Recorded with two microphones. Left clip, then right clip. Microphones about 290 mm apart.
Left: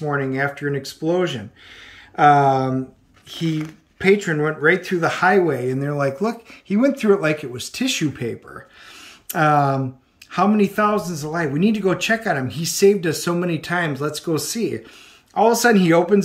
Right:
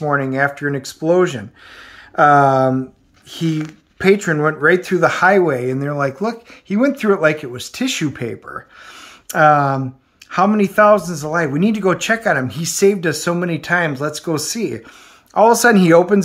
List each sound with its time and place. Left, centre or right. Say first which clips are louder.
0.0 s speech: right 5 dB; centre